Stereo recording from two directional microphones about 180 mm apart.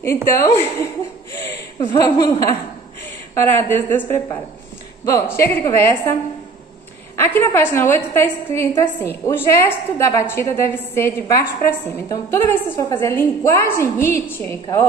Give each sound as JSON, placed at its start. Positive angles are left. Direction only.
{"t": 0.0, "sound": "a woman's voice", "side_deg": 15}
{"t": 1.9, "sound": "a woman's voice", "side_deg": 25}
{"t": 7.2, "sound": "a woman's voice", "side_deg": 15}